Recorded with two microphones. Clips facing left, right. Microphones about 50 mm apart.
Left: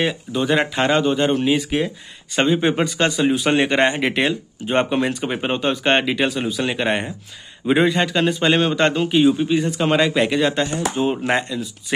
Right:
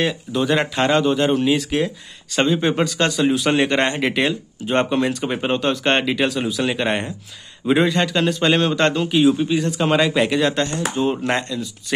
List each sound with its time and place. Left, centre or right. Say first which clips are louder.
0.0 s a man's voice: even; centre